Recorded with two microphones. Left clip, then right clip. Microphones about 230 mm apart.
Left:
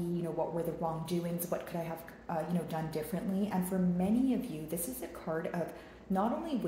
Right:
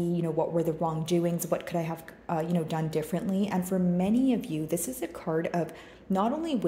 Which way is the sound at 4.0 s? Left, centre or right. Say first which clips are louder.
Right 4 dB; right.